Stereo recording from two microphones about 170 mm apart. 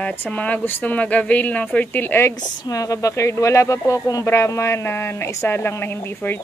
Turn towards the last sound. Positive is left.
turn(degrees=15)  # may be behind; listen again after turning